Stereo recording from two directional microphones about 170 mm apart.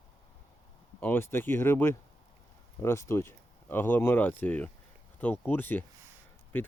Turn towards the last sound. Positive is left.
turn(degrees=10)  # may be behind; listen again after turning